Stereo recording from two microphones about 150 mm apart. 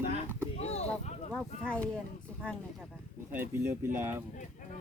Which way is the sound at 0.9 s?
5° left (ahead or behind).